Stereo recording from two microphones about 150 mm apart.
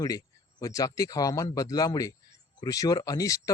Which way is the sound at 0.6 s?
25° left (ahead or behind).